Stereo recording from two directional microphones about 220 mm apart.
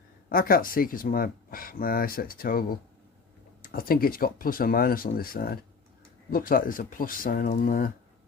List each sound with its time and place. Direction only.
0.3 s speech: 40° left (ahead or behind)